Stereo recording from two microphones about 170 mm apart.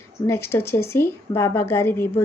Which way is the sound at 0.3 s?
15° left (ahead or behind).